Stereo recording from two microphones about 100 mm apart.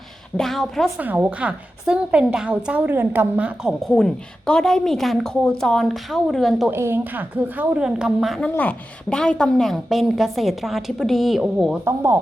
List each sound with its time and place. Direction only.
0.3 s a woman's voice: 5° left (ahead or behind)
0.9 s a woman's voice: 15° right (ahead or behind)
6.7 s a woman's voice: 25° right (ahead or behind); by 8.4 s 5° right (ahead or behind)
8.4 s a woman's voice: 10° left (ahead or behind)
11.9 s speech: 25° right (ahead or behind)